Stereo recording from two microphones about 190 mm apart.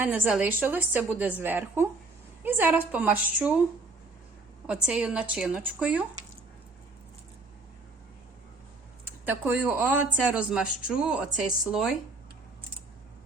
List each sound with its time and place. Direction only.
0.0 s a woman's voice: 10° right (ahead or behind)
4.6 s a woman's voice: 5° right (ahead or behind)
9.2 s a woman's voice: 10° right (ahead or behind)